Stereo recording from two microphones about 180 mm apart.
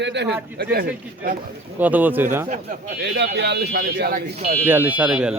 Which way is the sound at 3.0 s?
70° right (ahead or behind).